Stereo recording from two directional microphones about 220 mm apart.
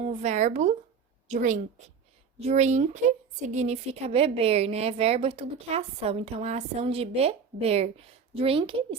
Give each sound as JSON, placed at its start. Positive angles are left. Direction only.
{"t": 0.0, "sound": "a woman's voice", "side_deg": -30}